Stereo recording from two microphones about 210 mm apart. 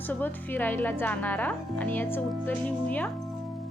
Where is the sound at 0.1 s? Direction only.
10° left (ahead or behind).